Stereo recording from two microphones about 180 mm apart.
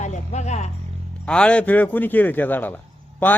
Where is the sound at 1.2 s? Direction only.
5° left (ahead or behind).